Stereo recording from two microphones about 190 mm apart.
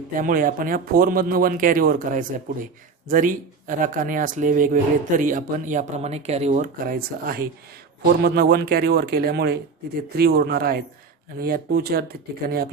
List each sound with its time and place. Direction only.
0.2 s speech: 45° right (ahead or behind)
6.8 s speech: 50° right (ahead or behind)